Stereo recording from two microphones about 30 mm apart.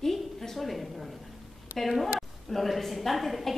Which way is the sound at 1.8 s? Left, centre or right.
Centre.